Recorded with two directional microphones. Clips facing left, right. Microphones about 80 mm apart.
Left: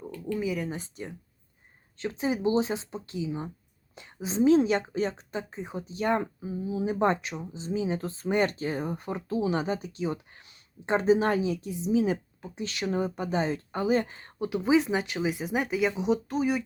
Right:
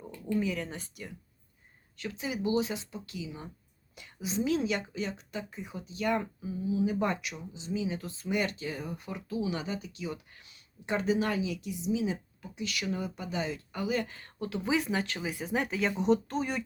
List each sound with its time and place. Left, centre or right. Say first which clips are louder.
0.3 s speech: left 1 dB; centre
2.0 s speech: left 6 dB; left; by 15.9 s centre
15.9 s speech: even; centre